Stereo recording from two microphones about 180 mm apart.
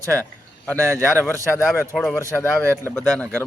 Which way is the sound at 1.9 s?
Centre (ahead or behind).